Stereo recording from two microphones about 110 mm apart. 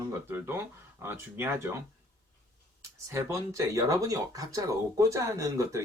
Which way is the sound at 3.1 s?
25° right (ahead or behind).